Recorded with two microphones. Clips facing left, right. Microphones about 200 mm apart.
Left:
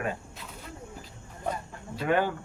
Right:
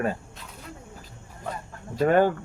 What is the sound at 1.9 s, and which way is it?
Speech, 45° right (ahead or behind).